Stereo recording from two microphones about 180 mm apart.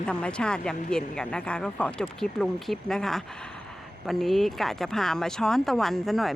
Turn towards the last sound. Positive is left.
turn(degrees=0)  # may be behind; listen again after turning